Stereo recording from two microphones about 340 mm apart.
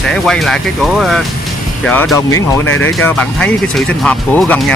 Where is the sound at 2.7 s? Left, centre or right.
Left.